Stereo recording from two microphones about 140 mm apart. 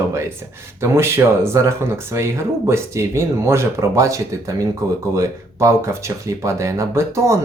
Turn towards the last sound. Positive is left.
turn(degrees=-20)  # may be behind; listen again after turning